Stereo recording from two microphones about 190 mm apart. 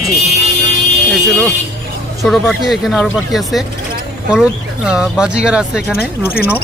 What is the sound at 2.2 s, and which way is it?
Speech, centre (ahead or behind).